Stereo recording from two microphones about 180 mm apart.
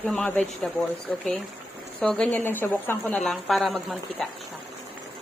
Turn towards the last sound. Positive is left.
turn(degrees=0)  # may be behind; listen again after turning